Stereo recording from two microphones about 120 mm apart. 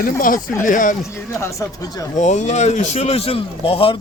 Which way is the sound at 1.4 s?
25° left (ahead or behind).